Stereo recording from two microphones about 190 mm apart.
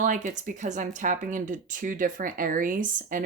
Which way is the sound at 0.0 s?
40° right (ahead or behind).